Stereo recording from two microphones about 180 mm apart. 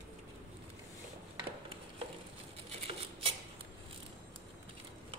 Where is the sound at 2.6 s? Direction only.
35° right (ahead or behind).